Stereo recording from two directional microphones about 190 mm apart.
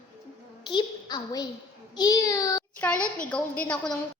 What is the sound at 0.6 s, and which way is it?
Speech, 25° left (ahead or behind).